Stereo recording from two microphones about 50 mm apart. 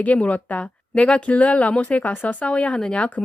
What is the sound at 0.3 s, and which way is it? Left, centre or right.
Speech, left.